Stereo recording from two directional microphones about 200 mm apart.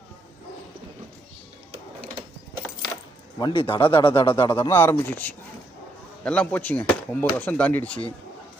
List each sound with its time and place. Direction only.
3.3 s speech: 25° left (ahead or behind); by 7.9 s 10° left (ahead or behind)